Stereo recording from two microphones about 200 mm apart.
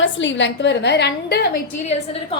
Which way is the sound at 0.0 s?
65° left (ahead or behind).